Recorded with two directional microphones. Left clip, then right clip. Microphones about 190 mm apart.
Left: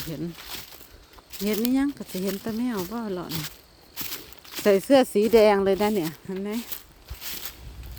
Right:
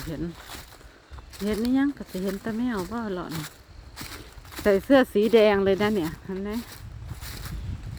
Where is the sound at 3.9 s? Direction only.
15° left (ahead or behind).